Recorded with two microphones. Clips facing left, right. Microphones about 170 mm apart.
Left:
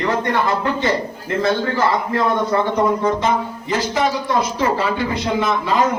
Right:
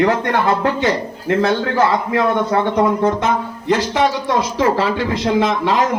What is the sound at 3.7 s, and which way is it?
A man's voice, 80° right.